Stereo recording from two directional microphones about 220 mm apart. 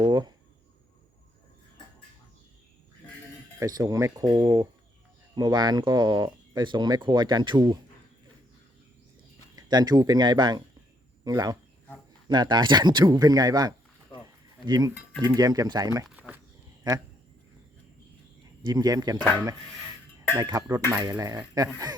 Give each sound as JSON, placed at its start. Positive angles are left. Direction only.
{"t": 0.0, "sound": "a sound", "side_deg": -20}
{"t": 3.6, "sound": "speech", "side_deg": -15}
{"t": 9.6, "sound": "speech", "side_deg": -20}
{"t": 16.0, "sound": "a sound", "side_deg": -5}
{"t": 18.6, "sound": "speech", "side_deg": -20}
{"t": 20.3, "sound": "speech", "side_deg": -15}